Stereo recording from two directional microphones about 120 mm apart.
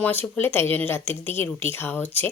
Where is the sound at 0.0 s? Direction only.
15° left (ahead or behind).